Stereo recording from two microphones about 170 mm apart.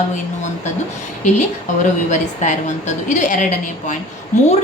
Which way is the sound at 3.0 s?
45° left (ahead or behind).